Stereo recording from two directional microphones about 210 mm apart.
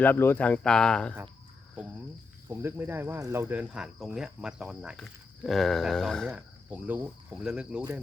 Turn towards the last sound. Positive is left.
turn(degrees=-5)  # may be behind; listen again after turning